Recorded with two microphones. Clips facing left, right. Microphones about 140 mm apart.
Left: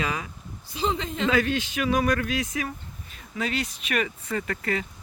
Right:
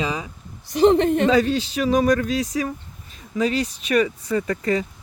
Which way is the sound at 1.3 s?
35° right (ahead or behind).